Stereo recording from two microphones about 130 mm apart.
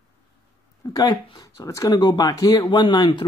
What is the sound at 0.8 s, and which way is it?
Speech, 35° left (ahead or behind).